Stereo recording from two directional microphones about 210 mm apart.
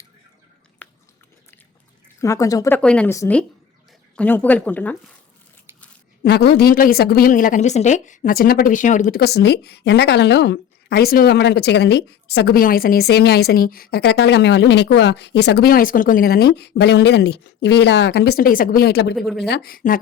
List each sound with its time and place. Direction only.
0.8 s biting: 10° left (ahead or behind)
2.2 s speech: 15° left (ahead or behind)
6.2 s a woman's voice: 50° left (ahead or behind)
19.1 s speech: centre (ahead or behind)
19.5 s a woman's voice: 50° left (ahead or behind)